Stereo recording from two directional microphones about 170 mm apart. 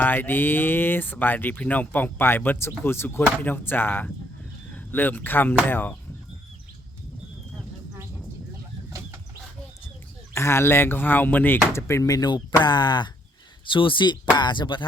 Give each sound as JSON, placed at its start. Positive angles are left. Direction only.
{"t": 0.0, "sound": "speech", "side_deg": 10}
{"t": 10.3, "sound": "speech", "side_deg": 15}